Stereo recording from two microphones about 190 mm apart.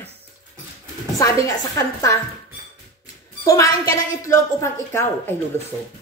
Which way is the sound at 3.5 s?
15° left (ahead or behind).